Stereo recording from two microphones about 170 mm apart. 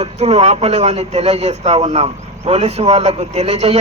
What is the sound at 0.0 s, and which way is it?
Speech, 40° right (ahead or behind).